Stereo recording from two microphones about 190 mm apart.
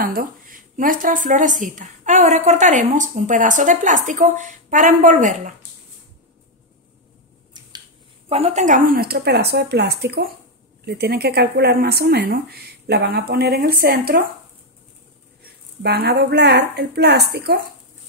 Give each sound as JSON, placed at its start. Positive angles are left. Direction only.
{"t": 0.0, "sound": "a woman's voice", "side_deg": -50}
{"t": 8.3, "sound": "speech", "side_deg": -35}
{"t": 15.4, "sound": "speech", "side_deg": -55}